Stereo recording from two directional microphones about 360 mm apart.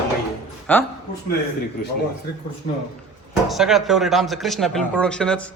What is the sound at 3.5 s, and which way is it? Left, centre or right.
A man's voice, centre.